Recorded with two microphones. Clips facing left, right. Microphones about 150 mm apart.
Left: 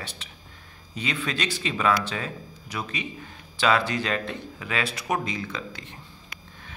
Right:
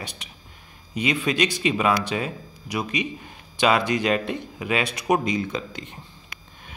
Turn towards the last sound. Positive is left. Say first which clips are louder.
# right 5 dB
turn(degrees=-20)  # may be behind; listen again after turning